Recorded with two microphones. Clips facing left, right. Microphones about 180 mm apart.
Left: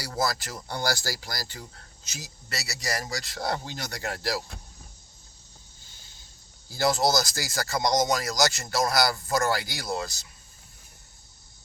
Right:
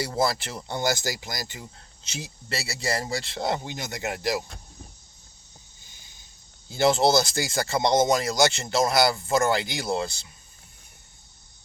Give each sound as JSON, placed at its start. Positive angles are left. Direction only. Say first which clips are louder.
{"t": 0.0, "sound": "speech", "louder": "right 4 dB", "side_deg": -25}
{"t": 5.8, "sound": "vehicle", "louder": "even", "side_deg": -15}
{"t": 6.7, "sound": "speech", "louder": "right 4 dB", "side_deg": -25}